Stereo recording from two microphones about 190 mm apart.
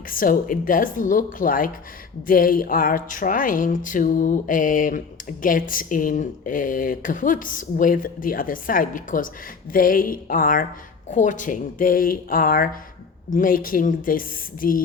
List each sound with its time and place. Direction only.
0.1 s speech: 45° left (ahead or behind)